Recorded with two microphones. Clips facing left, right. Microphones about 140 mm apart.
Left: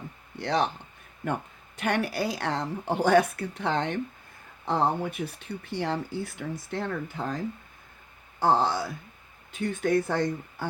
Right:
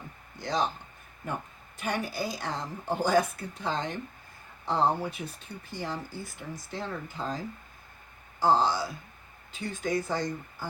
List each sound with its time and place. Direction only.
0.3 s speech: 65° left (ahead or behind)
8.4 s speech: 60° left (ahead or behind)